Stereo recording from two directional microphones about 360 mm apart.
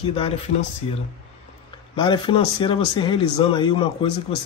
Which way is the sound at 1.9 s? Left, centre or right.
Centre.